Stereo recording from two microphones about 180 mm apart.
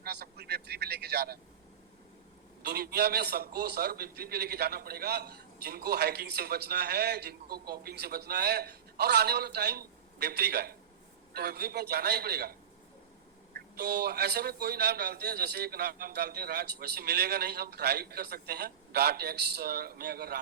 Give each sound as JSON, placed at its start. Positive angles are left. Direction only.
{"t": 0.0, "sound": "vehicle", "side_deg": -65}
{"t": 2.6, "sound": "a man's voice", "side_deg": -65}